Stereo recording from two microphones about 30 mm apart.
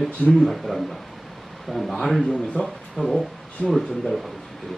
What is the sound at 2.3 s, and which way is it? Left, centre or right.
Speech, left.